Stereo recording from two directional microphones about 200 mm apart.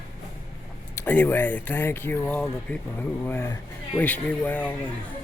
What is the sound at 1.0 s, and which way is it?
Speech, 10° left (ahead or behind).